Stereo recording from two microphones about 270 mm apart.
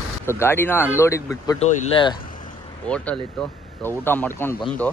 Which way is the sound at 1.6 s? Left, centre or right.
Left.